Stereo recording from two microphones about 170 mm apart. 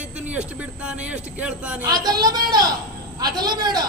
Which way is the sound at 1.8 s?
25° right (ahead or behind).